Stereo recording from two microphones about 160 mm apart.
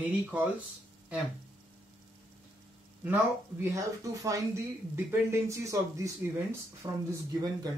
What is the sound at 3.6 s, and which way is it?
Speech, 20° right (ahead or behind).